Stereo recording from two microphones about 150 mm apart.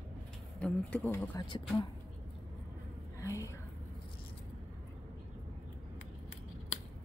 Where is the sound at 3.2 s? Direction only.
20° left (ahead or behind).